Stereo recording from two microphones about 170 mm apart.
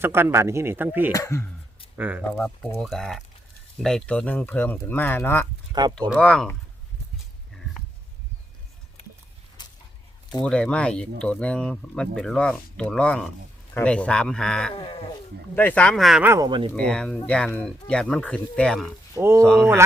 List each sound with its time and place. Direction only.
0.0 s speech: 15° right (ahead or behind)
1.1 s speech: 20° left (ahead or behind)
2.0 s speech: 10° right (ahead or behind)
2.8 s speech: centre (ahead or behind)
7.5 s a sound: centre (ahead or behind)
9.6 s a sound: 25° left (ahead or behind)
10.4 s speech: 5° left (ahead or behind)
14.8 s sheep: 35° left (ahead or behind)
15.5 s speech: 10° left (ahead or behind)
16.2 s speech: 15° right (ahead or behind)
16.5 s speech: 30° right (ahead or behind)
16.7 s speech: 5° left (ahead or behind)
19.1 s speech: 15° right (ahead or behind)